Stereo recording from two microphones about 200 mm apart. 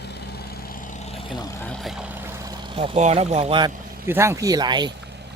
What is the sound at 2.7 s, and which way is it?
Speech, 25° right (ahead or behind).